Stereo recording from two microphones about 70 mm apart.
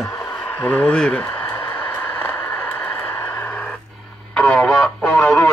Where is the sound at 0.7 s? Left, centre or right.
Centre.